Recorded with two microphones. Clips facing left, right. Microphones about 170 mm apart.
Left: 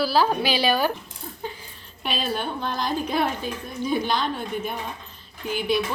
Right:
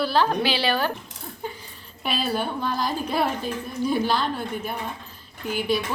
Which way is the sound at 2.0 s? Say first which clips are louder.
Right 1 dB; 10° right (ahead or behind).